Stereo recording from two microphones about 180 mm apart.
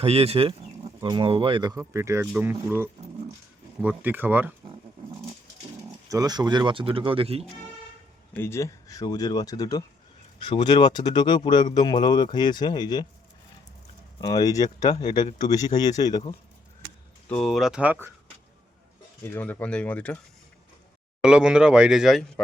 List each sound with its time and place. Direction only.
0.0 s speech: 35° right (ahead or behind); by 4.5 s 10° right (ahead or behind)
6.1 s speech: 20° right (ahead or behind)
8.4 s speech: 15° left (ahead or behind)
14.2 s speech: 20° left (ahead or behind)
17.2 s speech: 5° left (ahead or behind)
19.2 s speech: 10° left (ahead or behind)
21.2 s speech: 5° right (ahead or behind)